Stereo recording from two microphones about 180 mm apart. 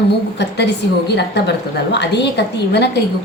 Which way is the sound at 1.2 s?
70° left (ahead or behind).